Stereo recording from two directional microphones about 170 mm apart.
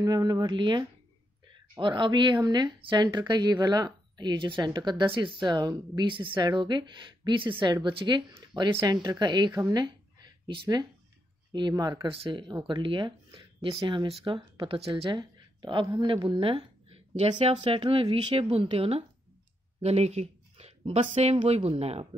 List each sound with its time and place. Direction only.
0.0 s speech: 20° right (ahead or behind)